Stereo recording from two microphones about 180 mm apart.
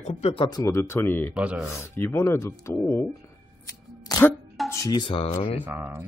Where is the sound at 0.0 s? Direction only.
35° left (ahead or behind); by 1.3 s 10° left (ahead or behind).